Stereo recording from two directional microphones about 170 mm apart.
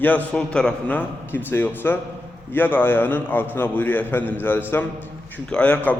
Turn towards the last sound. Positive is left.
turn(degrees=10)  # may be behind; listen again after turning